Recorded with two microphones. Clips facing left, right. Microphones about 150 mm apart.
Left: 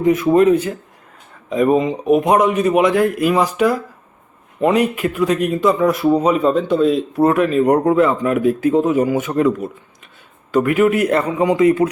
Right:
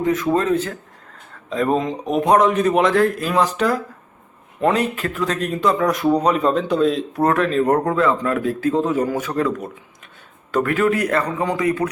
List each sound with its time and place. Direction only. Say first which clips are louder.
0.0 s speech: left 6 dB; 15° left (ahead or behind)
10.5 s speech: left 4 dB; 15° left (ahead or behind)